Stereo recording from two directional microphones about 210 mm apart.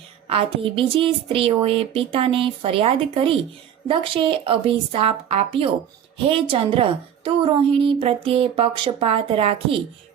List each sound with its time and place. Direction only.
0.3 s a woman's voice: 25° right (ahead or behind)